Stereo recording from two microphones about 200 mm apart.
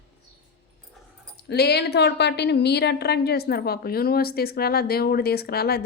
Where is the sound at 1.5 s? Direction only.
55° left (ahead or behind).